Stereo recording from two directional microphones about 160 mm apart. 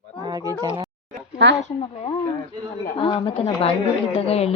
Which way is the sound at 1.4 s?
90° right.